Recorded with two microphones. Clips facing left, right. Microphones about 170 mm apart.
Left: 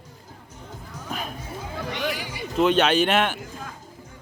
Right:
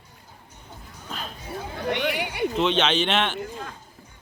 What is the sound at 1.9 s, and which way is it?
Speech, 65° right (ahead or behind).